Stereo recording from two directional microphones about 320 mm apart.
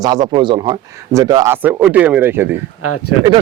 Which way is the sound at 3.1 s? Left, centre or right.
Left.